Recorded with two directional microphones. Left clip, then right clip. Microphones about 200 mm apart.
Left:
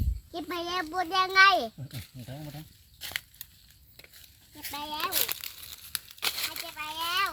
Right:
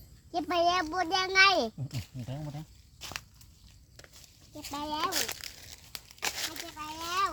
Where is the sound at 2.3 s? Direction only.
10° right (ahead or behind).